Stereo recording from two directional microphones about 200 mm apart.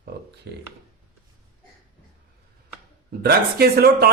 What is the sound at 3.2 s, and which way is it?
Speech, 50° right (ahead or behind).